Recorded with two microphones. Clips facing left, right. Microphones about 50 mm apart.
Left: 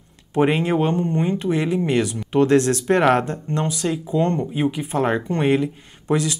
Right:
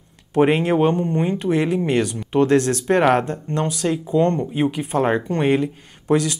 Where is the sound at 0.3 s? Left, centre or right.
Centre.